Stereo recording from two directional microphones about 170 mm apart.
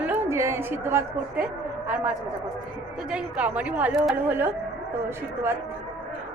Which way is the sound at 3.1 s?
5° right (ahead or behind).